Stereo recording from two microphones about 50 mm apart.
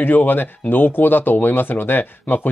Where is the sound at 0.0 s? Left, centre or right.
Left.